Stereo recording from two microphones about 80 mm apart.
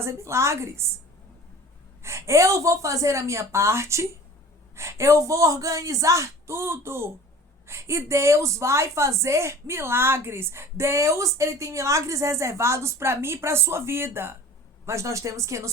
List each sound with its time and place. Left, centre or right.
0.0 s a woman's voice: right
2.0 s a woman's voice: right